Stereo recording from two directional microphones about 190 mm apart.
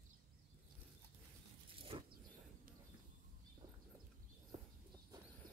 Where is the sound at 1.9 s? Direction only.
25° right (ahead or behind).